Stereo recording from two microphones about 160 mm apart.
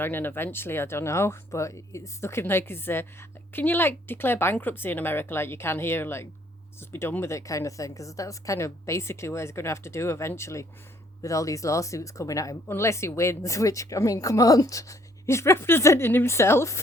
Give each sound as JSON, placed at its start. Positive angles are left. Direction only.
{"t": 0.0, "sound": "speech", "side_deg": 10}